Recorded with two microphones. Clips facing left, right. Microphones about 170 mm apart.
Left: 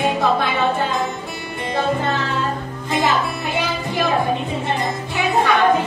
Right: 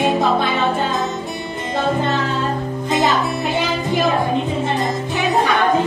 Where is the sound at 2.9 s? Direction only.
20° right (ahead or behind).